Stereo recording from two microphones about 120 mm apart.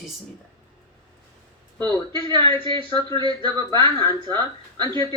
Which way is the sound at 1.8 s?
35° right (ahead or behind).